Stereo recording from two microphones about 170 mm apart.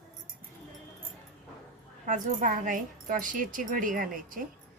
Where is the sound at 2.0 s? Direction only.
50° right (ahead or behind).